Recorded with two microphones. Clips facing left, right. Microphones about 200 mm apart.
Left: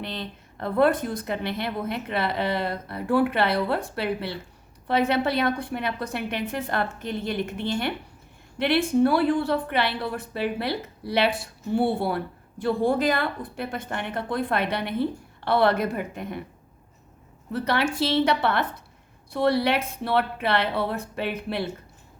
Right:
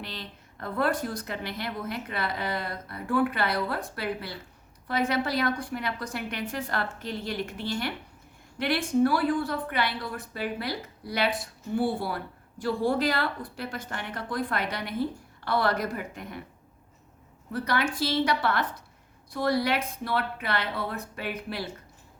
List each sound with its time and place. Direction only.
0.0 s speech: 25° left (ahead or behind)
17.5 s speech: 25° left (ahead or behind)
17.9 s a woman's voice: 65° left (ahead or behind)
18.3 s speech: 25° left (ahead or behind)